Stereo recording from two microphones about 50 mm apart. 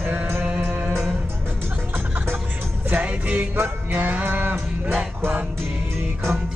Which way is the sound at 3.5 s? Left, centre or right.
Right.